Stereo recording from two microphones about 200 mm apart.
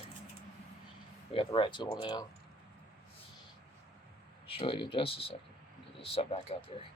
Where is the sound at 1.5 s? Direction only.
25° left (ahead or behind).